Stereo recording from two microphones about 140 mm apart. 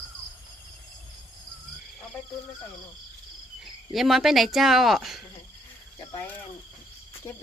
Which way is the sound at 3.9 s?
Centre (ahead or behind).